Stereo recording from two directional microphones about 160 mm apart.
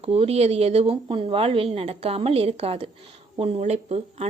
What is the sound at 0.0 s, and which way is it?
Speech, 40° right (ahead or behind).